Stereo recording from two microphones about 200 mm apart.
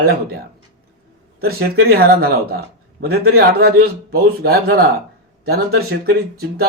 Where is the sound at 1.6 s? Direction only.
50° right (ahead or behind).